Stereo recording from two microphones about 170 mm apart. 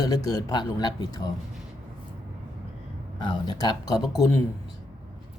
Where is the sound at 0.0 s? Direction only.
20° left (ahead or behind).